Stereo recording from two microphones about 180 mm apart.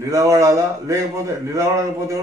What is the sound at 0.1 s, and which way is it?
Speech, 15° right (ahead or behind).